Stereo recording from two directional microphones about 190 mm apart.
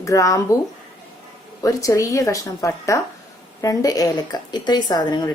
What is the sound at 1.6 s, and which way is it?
A woman's voice, 15° left (ahead or behind).